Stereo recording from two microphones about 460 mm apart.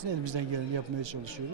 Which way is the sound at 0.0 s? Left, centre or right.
Right.